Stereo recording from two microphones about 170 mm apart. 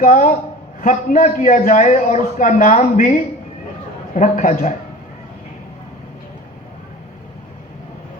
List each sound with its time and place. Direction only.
0.0 s a man's voice: 50° left (ahead or behind)